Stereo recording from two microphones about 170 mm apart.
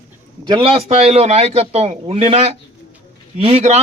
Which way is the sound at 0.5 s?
35° right (ahead or behind).